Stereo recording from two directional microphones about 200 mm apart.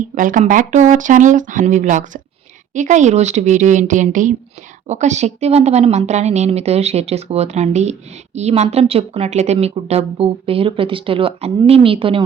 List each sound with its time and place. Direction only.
0.1 s a woman's voice: 40° right (ahead or behind)